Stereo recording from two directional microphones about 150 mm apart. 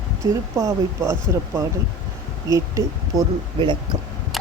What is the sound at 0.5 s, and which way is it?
Speech, 20° right (ahead or behind).